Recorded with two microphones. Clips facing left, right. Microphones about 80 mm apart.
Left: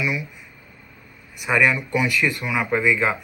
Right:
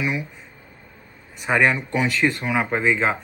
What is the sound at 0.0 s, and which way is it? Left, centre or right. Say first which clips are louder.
Speech: even; right.